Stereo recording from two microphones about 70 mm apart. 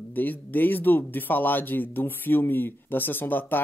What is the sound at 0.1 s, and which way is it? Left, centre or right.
Speech, left.